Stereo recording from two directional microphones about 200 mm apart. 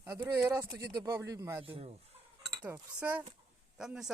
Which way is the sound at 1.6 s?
30° right (ahead or behind).